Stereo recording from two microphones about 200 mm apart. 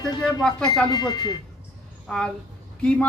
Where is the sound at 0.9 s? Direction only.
20° left (ahead or behind).